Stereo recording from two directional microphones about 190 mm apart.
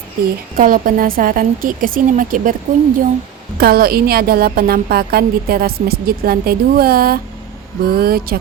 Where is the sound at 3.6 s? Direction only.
50° right (ahead or behind).